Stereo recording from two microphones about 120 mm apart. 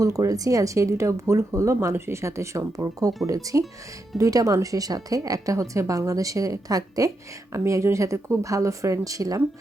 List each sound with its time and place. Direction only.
0.0 s speech: 25° right (ahead or behind)